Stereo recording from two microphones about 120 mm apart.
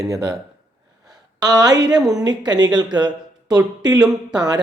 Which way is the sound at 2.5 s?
35° right (ahead or behind).